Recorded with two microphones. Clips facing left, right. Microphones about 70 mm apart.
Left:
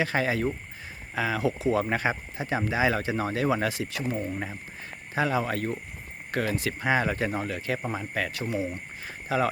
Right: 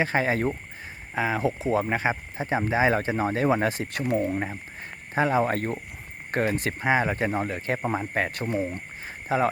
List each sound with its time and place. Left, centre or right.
0.0 s speech: right
4.4 s speech: right
9.0 s a sound: right